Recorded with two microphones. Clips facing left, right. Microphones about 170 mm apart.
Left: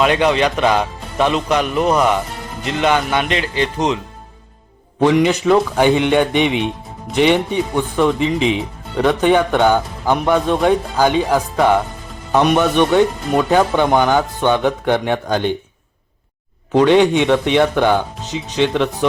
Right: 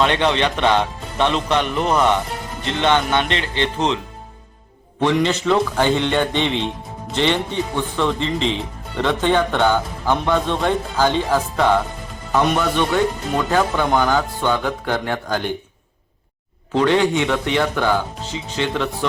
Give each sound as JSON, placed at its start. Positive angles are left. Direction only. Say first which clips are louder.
{"t": 0.2, "sound": "speech", "louder": "left 3 dB", "side_deg": 10}
{"t": 3.2, "sound": "speech", "louder": "left 3 dB", "side_deg": -30}
{"t": 4.9, "sound": "speech", "louder": "left 4 dB", "side_deg": 15}
{"t": 16.7, "sound": "speech", "louder": "left 5 dB", "side_deg": 20}